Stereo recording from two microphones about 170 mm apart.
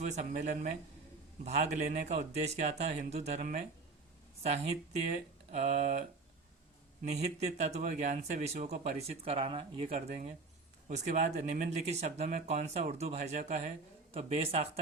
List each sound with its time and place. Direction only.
0.1 s speech: 45° right (ahead or behind)
5.5 s speech: 40° right (ahead or behind)
10.8 s speech: 45° right (ahead or behind)